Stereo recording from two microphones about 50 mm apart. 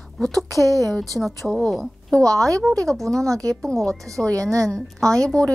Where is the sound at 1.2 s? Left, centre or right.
Centre.